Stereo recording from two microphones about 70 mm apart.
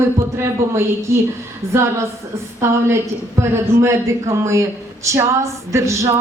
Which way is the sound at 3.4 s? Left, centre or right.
Right.